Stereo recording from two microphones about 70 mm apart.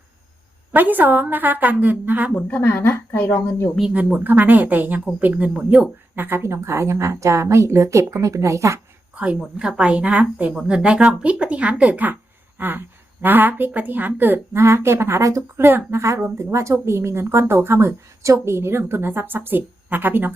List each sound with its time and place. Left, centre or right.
0.7 s speech: right
2.5 s a woman's voice: left
3.9 s speech: right
9.1 s speech: centre
12.5 s a sound: right
13.2 s a woman's voice: right
15.5 s a woman's voice: right